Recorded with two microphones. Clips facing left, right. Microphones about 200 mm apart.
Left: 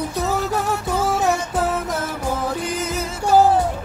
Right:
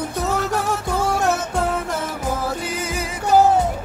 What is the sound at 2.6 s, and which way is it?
Music, 5° right (ahead or behind).